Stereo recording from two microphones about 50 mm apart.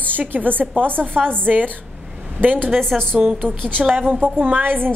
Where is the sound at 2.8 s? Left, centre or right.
Centre.